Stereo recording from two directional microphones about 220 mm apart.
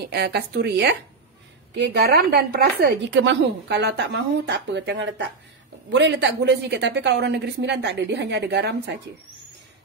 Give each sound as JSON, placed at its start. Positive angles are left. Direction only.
{"t": 0.1, "sound": "a woman's voice", "side_deg": -50}